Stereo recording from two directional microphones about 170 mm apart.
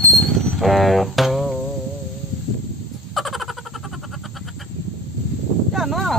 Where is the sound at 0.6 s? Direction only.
Centre (ahead or behind).